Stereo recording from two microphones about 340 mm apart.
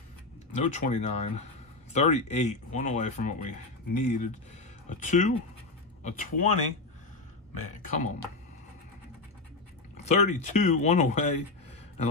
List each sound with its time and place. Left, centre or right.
0.6 s speech: centre
7.9 s speech: left
9.9 s speech: left